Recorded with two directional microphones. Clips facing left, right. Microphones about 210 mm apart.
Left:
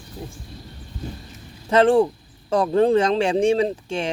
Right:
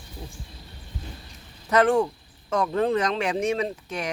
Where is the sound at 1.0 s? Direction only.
45° left (ahead or behind).